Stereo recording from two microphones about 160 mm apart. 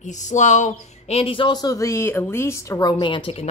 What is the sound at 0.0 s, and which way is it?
Speech, 50° left (ahead or behind).